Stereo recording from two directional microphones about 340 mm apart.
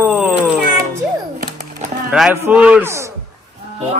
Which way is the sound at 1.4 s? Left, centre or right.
Right.